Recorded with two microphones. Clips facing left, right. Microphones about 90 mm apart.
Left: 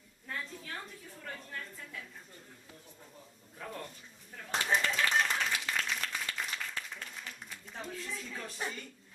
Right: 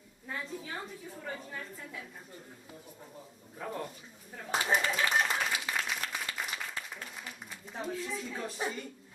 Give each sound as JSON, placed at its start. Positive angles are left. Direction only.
{"t": 0.3, "sound": "a woman's voice", "side_deg": -10}
{"t": 3.5, "sound": "speech", "side_deg": -10}
{"t": 4.4, "sound": "clapping", "side_deg": -10}